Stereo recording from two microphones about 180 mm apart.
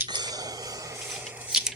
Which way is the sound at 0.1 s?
20° right (ahead or behind).